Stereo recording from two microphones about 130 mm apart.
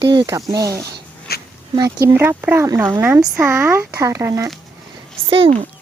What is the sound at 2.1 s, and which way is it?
Speech, 15° right (ahead or behind).